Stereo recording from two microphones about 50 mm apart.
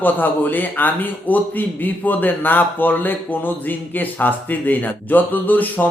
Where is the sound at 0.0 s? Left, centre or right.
Left.